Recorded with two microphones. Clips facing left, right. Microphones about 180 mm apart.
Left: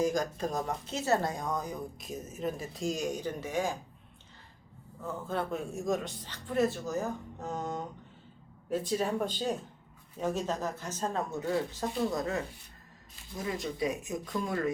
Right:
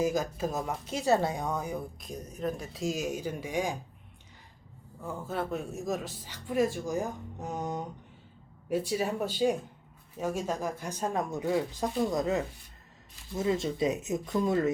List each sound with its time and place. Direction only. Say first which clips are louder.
0.0 s speech: right 1 dB; 5° right (ahead or behind)
2.0 s speech: right 1 dB; 5° left (ahead or behind); by 3.8 s 15° right (ahead or behind)
4.9 s speech: even; 10° right (ahead or behind)